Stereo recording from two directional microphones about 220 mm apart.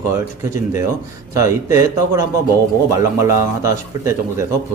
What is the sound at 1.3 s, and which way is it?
Speech, 15° right (ahead or behind).